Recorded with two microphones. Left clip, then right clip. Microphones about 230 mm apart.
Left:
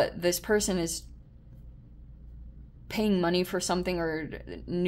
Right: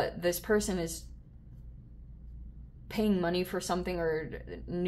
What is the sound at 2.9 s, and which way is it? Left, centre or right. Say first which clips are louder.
Speech: left 3 dB; left.